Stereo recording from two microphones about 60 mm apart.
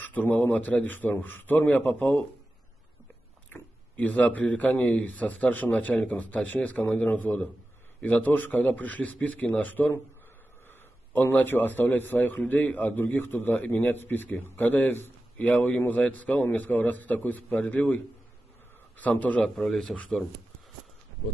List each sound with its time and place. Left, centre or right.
0.0 s speech: left
3.4 s speech: left
7.1 s a man's voice: left
15.4 s speech: left
19.4 s a man's voice: centre
19.8 s speech: centre